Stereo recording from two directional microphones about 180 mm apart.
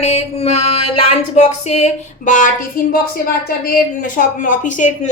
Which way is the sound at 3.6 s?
50° left (ahead or behind).